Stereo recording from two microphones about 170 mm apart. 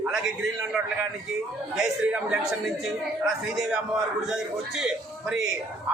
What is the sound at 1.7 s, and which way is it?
A man's voice, 5° right (ahead or behind).